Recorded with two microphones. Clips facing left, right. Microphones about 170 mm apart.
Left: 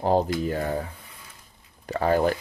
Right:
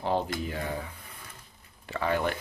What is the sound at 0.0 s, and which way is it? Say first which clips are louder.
Speech: left 7 dB; 40° left (ahead or behind).